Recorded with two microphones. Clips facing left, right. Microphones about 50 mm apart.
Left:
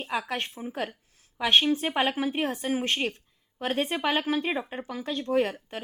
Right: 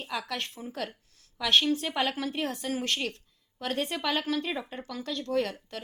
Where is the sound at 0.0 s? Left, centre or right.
Left.